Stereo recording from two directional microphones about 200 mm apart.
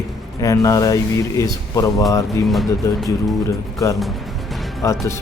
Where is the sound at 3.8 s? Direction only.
15° left (ahead or behind).